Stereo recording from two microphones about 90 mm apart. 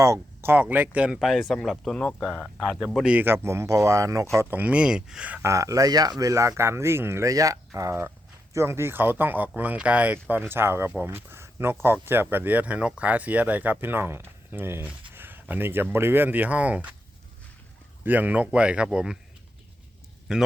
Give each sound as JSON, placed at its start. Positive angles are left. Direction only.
{"t": 0.0, "sound": "speech", "side_deg": -35}
{"t": 0.5, "sound": "speech", "side_deg": -20}
{"t": 2.9, "sound": "speech", "side_deg": -5}
{"t": 3.2, "sound": "speech", "side_deg": -25}
{"t": 4.4, "sound": "speech", "side_deg": -20}
{"t": 5.4, "sound": "speech", "side_deg": -35}
{"t": 18.0, "sound": "speech", "side_deg": -20}
{"t": 20.3, "sound": "speech", "side_deg": -5}